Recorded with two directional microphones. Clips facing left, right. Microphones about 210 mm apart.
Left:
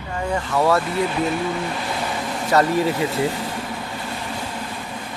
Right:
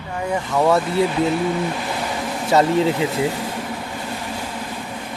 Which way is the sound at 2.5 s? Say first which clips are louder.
Right 2 dB; 20° right (ahead or behind).